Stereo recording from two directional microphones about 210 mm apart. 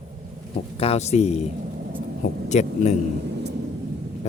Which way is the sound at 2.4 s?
35° left (ahead or behind).